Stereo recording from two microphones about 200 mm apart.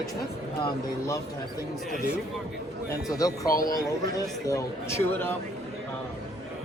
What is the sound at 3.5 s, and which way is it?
Speech, 45° left (ahead or behind).